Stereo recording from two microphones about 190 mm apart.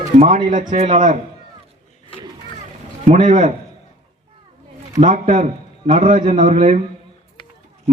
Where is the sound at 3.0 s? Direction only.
40° right (ahead or behind).